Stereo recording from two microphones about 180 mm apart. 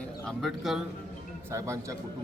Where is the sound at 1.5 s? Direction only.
15° right (ahead or behind).